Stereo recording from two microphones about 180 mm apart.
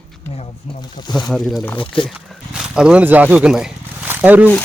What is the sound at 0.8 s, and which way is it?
Speech, 25° left (ahead or behind).